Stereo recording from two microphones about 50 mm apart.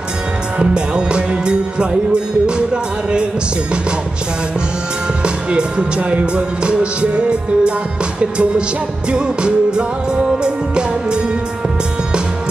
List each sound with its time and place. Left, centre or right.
0.6 s music: centre
5.2 s music: right